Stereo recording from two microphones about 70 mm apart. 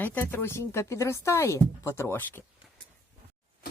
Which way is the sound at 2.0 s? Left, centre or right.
Left.